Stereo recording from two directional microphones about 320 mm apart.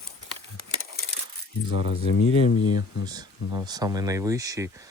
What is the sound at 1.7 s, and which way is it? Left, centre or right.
Speech, left.